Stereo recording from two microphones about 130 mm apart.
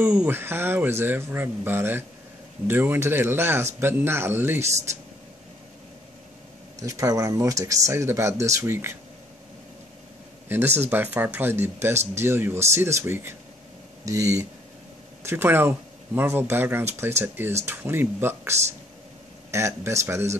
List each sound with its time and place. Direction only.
0.0 s speech: 10° right (ahead or behind)
6.8 s speech: 25° right (ahead or behind)
10.5 s speech: 15° right (ahead or behind)